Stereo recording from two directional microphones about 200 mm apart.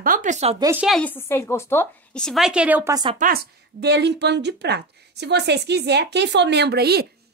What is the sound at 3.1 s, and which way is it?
Speech, 45° right (ahead or behind).